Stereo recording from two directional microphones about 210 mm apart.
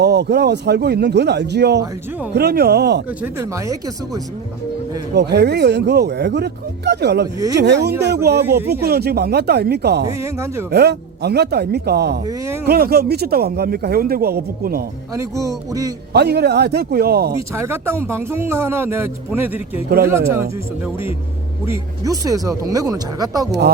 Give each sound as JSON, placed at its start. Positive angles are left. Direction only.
{"t": 0.0, "sound": "speech", "side_deg": -55}
{"t": 3.1, "sound": "speech", "side_deg": -10}
{"t": 5.1, "sound": "speech", "side_deg": -55}
{"t": 8.4, "sound": "speech", "side_deg": -10}
{"t": 8.7, "sound": "speech", "side_deg": -50}
{"t": 10.1, "sound": "speech", "side_deg": -15}
{"t": 10.7, "sound": "speech", "side_deg": -50}
{"t": 12.2, "sound": "speech", "side_deg": -15}
{"t": 12.6, "sound": "speech", "side_deg": -45}
{"t": 15.1, "sound": "speech", "side_deg": -15}
{"t": 16.1, "sound": "speech", "side_deg": -50}
{"t": 17.5, "sound": "speech", "side_deg": -10}
{"t": 23.5, "sound": "speech", "side_deg": -50}